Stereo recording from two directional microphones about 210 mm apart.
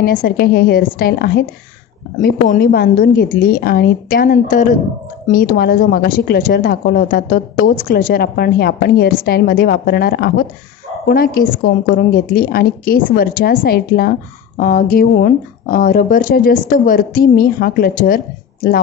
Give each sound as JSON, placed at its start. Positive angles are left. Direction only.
{"t": 0.0, "sound": "a woman's voice", "side_deg": 45}